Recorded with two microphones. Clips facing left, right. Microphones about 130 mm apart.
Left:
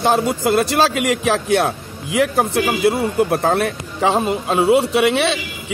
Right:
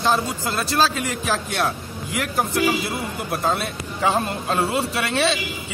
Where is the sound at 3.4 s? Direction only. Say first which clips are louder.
Left 6 dB; 65° left (ahead or behind).